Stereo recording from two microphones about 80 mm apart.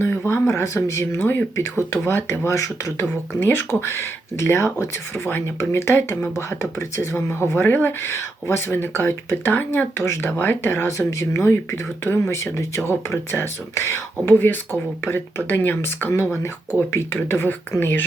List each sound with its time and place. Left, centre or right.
0.3 s speech: left
3.4 s speech: left
14.3 s speech: left